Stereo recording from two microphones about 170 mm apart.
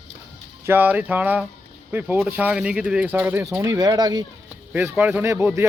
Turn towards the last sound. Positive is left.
turn(degrees=-15)  # may be behind; listen again after turning